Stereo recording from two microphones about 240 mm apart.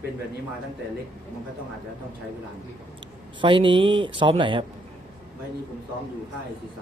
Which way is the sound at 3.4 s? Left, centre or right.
Right.